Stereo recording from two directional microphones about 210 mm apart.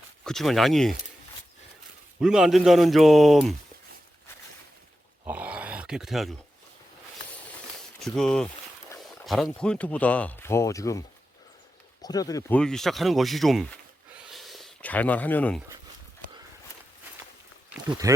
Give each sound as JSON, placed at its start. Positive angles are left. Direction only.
{"t": 0.3, "sound": "a man's voice", "side_deg": 0}
{"t": 2.2, "sound": "a man's voice", "side_deg": -5}
{"t": 5.2, "sound": "a sound", "side_deg": -5}
{"t": 8.0, "sound": "a man's voice", "side_deg": 5}
{"t": 12.0, "sound": "speech", "side_deg": 15}
{"t": 12.5, "sound": "a man's voice", "side_deg": 5}
{"t": 14.3, "sound": "a sound", "side_deg": 0}
{"t": 18.0, "sound": "speech", "side_deg": -15}